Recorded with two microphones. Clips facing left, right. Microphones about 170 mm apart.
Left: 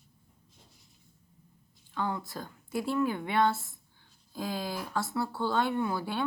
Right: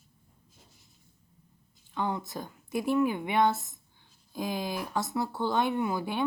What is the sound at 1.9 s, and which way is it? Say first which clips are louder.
A woman's voice: right 2 dB; 20° right (ahead or behind).